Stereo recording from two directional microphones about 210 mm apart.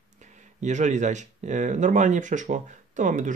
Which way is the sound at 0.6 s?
35° right (ahead or behind).